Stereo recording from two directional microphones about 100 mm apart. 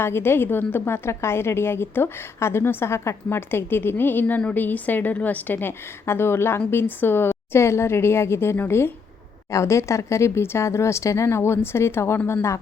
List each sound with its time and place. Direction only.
0.0 s a woman's voice: 25° left (ahead or behind)